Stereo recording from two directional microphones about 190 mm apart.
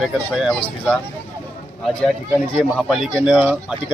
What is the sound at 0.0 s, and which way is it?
Speech, centre (ahead or behind).